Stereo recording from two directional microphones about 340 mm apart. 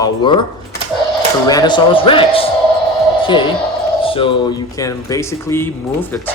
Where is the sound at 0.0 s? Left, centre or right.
Centre.